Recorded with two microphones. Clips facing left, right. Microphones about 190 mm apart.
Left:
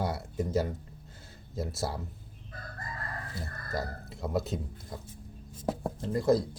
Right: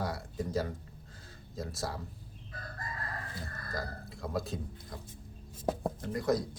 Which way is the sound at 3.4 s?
25° left (ahead or behind).